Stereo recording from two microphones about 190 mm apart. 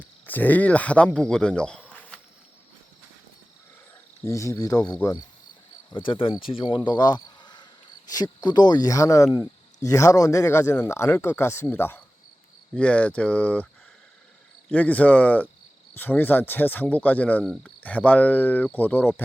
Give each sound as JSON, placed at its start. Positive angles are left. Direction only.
{"t": 0.0, "sound": "speech", "side_deg": 10}
{"t": 4.2, "sound": "speech", "side_deg": 15}
{"t": 14.7, "sound": "speech", "side_deg": 10}